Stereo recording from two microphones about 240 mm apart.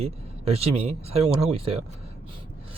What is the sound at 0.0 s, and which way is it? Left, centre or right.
Speech, right.